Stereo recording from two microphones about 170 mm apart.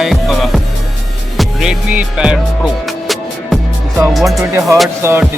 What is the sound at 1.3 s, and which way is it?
Music, centre (ahead or behind).